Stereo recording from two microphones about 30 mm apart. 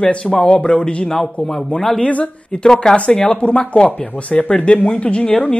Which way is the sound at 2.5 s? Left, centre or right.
Left.